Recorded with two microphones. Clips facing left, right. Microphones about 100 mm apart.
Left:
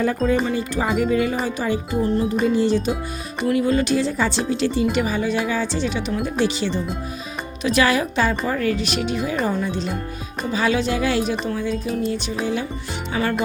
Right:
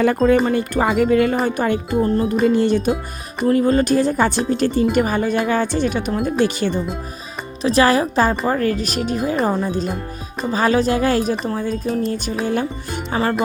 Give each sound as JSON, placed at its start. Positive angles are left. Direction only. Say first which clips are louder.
{"t": 0.0, "sound": "speech", "louder": "right 5 dB", "side_deg": -70}
{"t": 0.4, "sound": "music", "louder": "right 4 dB", "side_deg": -55}
{"t": 3.4, "sound": "speech", "louder": "right 4 dB", "side_deg": -40}
{"t": 7.6, "sound": "speech", "louder": "right 4 dB", "side_deg": -35}
{"t": 13.1, "sound": "speech", "louder": "right 3 dB", "side_deg": -35}